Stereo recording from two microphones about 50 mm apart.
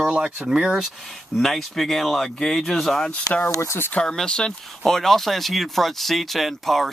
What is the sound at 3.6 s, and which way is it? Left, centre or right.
Speech, left.